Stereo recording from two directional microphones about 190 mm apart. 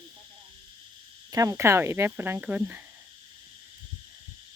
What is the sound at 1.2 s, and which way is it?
Speech, 15° right (ahead or behind).